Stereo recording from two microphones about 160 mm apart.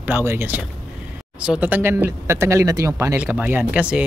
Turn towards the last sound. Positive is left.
turn(degrees=-10)  # may be behind; listen again after turning